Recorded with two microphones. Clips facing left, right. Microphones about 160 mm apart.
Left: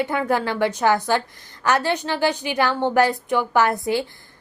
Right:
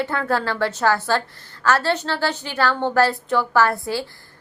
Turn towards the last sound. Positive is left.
turn(degrees=20)  # may be behind; listen again after turning